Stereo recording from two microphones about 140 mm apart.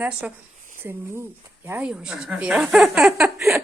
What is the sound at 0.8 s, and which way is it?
Speech, 15° right (ahead or behind).